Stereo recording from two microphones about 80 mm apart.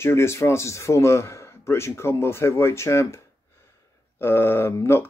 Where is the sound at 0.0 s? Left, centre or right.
Left.